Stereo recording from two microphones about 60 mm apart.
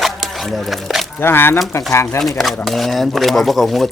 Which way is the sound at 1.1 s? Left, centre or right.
Left.